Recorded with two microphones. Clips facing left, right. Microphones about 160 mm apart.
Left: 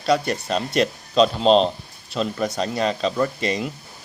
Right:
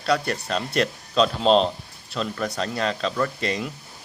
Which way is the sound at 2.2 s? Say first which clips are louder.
Left 3 dB; 15° left (ahead or behind).